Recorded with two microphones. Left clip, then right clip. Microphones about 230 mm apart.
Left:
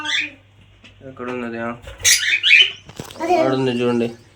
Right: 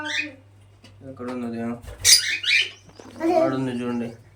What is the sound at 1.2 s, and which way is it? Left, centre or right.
Speech, left.